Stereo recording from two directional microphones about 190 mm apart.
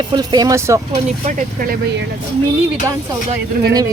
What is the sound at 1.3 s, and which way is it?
Speech, 45° right (ahead or behind).